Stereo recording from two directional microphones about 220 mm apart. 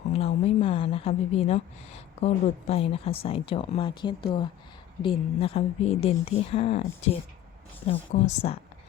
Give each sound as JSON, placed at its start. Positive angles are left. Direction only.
{"t": 0.1, "sound": "a woman's voice", "side_deg": 25}